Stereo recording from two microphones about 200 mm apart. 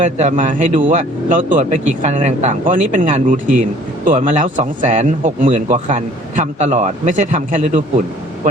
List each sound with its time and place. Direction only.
0.0 s speech: 40° right (ahead or behind)